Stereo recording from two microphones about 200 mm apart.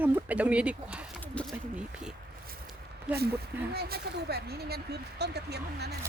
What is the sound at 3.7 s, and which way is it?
Speech, 50° right (ahead or behind).